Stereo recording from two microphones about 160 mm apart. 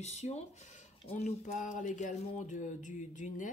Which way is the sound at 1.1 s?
40° left (ahead or behind).